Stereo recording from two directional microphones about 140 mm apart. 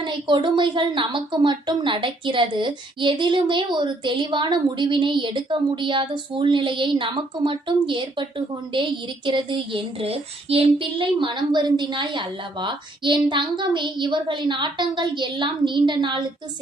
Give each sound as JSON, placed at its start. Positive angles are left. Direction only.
{"t": 0.0, "sound": "a woman's voice", "side_deg": -35}